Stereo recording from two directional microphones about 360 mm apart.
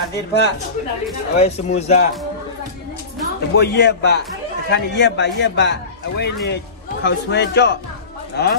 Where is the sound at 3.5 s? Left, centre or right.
Left.